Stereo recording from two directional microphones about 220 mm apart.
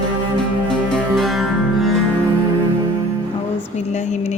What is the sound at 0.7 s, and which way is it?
Music, centre (ahead or behind).